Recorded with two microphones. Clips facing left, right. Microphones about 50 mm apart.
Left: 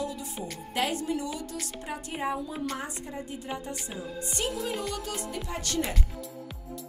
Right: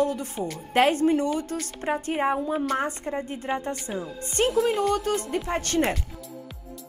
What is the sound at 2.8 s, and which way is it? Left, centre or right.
A woman's voice, right.